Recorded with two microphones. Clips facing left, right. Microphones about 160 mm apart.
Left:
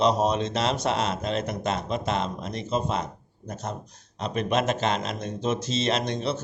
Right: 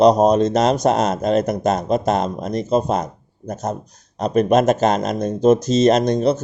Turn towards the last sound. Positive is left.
turn(degrees=-40)  # may be behind; listen again after turning